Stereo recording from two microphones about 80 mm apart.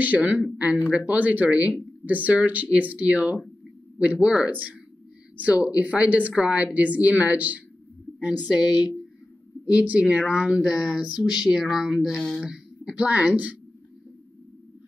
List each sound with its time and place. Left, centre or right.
0.0 s speech: centre
4.5 s speech: right
9.7 s speech: centre